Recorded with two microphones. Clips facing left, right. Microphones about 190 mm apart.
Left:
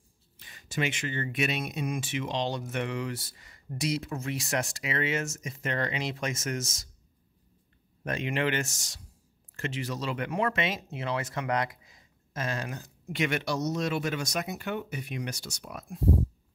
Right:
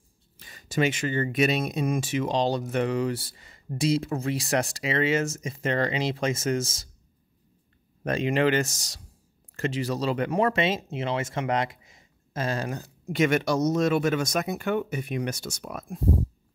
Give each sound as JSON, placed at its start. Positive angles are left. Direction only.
{"t": 0.4, "sound": "speech", "side_deg": -40}
{"t": 8.0, "sound": "speech", "side_deg": -35}